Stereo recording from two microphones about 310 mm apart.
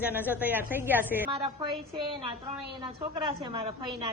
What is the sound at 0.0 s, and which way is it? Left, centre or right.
A woman's voice, centre.